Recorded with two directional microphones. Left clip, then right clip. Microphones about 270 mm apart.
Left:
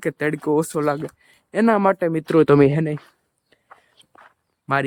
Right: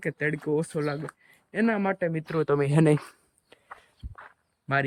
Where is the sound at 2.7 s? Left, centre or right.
Centre.